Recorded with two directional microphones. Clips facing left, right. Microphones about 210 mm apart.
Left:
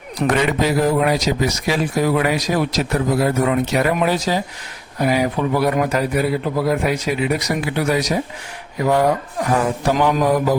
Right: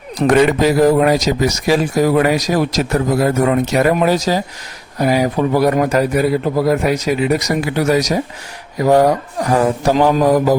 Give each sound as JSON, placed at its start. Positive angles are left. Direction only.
{"t": 0.2, "sound": "a man's voice", "side_deg": -35}